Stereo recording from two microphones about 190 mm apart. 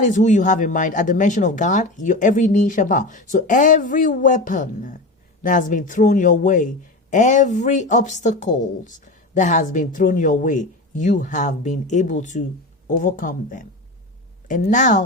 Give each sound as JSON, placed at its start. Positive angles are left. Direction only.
{"t": 0.0, "sound": "speech", "side_deg": 40}